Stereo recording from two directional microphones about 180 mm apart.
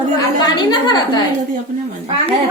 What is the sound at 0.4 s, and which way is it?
Speech, 25° left (ahead or behind).